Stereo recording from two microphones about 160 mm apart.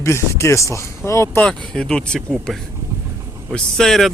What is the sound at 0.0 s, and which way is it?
Speech, 15° left (ahead or behind).